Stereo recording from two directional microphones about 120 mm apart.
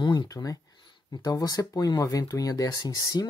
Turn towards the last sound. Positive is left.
turn(degrees=30)  # may be behind; listen again after turning